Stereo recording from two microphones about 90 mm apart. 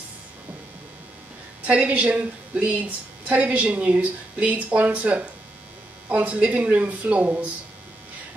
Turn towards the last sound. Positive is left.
turn(degrees=-15)  # may be behind; listen again after turning